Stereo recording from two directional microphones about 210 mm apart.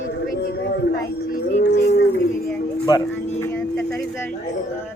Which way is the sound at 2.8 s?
15° left (ahead or behind).